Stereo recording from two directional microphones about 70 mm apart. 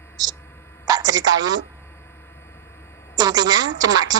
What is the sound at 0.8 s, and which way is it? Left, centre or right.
Speech, right.